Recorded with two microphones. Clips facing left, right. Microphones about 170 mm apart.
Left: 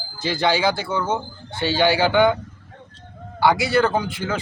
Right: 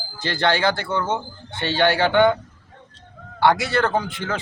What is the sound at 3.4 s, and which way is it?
Speech, 5° left (ahead or behind).